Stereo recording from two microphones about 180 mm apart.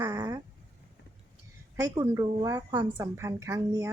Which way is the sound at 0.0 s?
20° right (ahead or behind).